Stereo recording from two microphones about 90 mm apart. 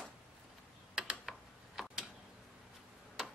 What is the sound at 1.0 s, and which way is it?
Typing, 5° right (ahead or behind).